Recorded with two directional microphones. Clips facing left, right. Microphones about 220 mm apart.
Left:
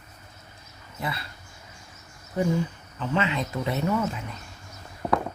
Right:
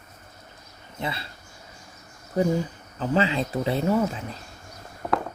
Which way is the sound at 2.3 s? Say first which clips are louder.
Right 2 dB; 35° right (ahead or behind).